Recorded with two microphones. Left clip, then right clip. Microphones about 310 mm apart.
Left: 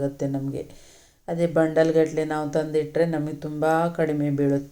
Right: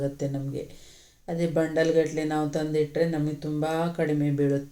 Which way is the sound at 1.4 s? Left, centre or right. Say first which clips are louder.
Left 5 dB; centre.